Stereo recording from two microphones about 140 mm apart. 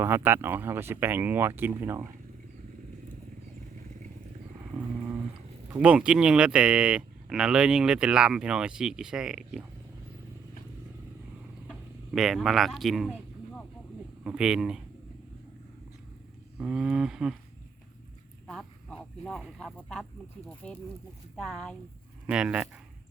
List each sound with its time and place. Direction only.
0.0 s speech: 15° right (ahead or behind)
5.7 s speech: 10° right (ahead or behind)
11.7 s speech: centre (ahead or behind)
14.3 s speech: 5° right (ahead or behind)
16.6 s speech: 5° right (ahead or behind)
18.4 s a sound: 5° left (ahead or behind)
19.7 s speech: 5° left (ahead or behind)
22.3 s speech: 10° right (ahead or behind)